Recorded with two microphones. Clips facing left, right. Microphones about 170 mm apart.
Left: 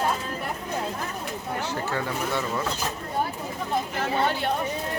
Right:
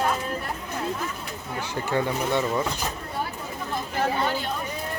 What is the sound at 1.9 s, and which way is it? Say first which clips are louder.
Speech: right 7 dB; 20° right (ahead or behind).